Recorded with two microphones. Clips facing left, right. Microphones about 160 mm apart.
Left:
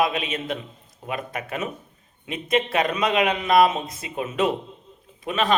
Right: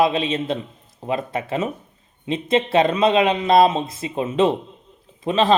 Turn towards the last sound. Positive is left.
turn(degrees=-30)  # may be behind; listen again after turning